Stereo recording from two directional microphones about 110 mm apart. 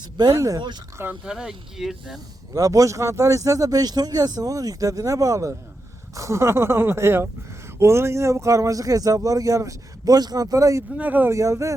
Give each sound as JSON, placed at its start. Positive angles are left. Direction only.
{"t": 0.0, "sound": "speech", "side_deg": -35}
{"t": 1.2, "sound": "speech", "side_deg": -10}
{"t": 2.5, "sound": "speech", "side_deg": -30}
{"t": 10.9, "sound": "speech", "side_deg": -15}
{"t": 11.3, "sound": "speech", "side_deg": -30}